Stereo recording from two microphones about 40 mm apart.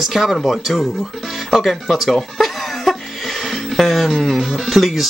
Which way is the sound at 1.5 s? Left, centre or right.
Centre.